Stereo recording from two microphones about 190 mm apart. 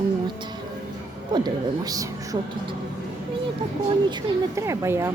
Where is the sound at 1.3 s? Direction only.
20° right (ahead or behind).